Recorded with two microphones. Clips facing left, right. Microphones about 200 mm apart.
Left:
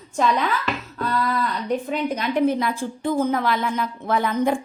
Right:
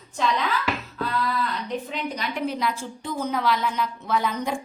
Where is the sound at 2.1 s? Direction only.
50° left (ahead or behind).